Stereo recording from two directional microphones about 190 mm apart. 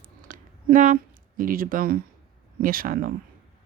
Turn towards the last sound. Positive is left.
turn(degrees=-50)  # may be behind; listen again after turning